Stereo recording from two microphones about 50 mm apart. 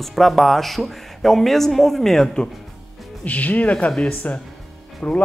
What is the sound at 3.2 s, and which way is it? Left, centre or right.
Speech, left.